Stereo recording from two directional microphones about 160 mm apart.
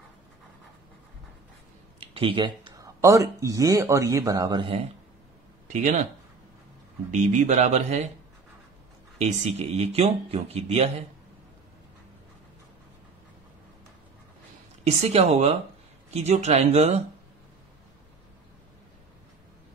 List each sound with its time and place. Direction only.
2.0 s speech: 35° right (ahead or behind)
5.7 s speech: 50° right (ahead or behind)
7.1 s speech: 45° right (ahead or behind)
9.2 s speech: 45° right (ahead or behind)
14.9 s speech: 40° right (ahead or behind)